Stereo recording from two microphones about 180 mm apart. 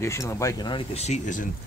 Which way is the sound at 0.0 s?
15° left (ahead or behind).